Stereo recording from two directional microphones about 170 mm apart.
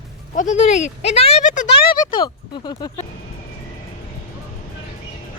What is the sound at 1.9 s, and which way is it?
Speech, 25° left (ahead or behind).